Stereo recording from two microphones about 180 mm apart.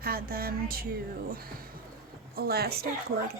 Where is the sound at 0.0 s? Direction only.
55° right (ahead or behind).